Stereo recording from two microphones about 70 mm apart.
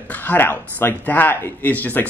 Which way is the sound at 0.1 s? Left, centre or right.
Left.